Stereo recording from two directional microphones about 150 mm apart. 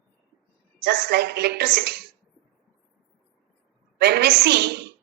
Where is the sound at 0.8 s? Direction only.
90° right.